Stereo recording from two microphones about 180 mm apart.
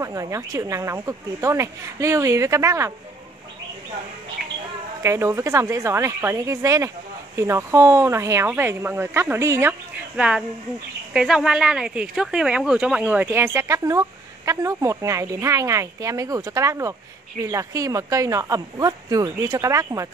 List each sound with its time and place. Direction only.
0.0 s speech: 15° right (ahead or behind)
5.0 s speech: 15° right (ahead or behind)